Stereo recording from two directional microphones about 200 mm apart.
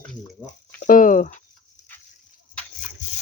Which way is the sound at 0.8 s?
40° left (ahead or behind).